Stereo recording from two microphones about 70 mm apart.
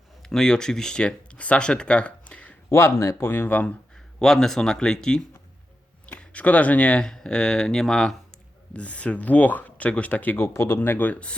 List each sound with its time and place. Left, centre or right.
0.2 s speech: centre
2.6 s speech: left
3.9 s speech: centre
8.7 s speech: centre
10.4 s speech: left; by 11.3 s centre